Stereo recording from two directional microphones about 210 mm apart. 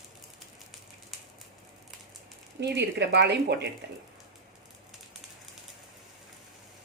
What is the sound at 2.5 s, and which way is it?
Speech, 55° right (ahead or behind).